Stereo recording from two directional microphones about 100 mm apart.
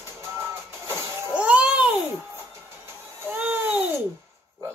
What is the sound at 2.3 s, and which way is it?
Music, 25° right (ahead or behind).